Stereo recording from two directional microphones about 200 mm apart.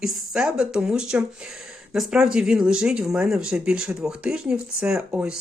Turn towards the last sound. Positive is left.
turn(degrees=-5)  # may be behind; listen again after turning